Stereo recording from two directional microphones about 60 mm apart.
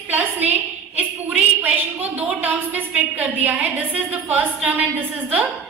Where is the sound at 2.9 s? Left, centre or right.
Right.